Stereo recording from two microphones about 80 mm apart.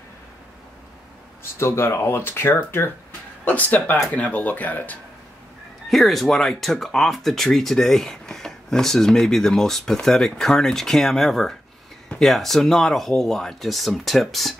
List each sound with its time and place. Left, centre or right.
1.6 s speech: left
5.9 s speech: centre